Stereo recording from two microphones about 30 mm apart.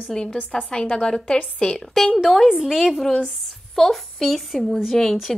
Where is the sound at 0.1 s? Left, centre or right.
Left.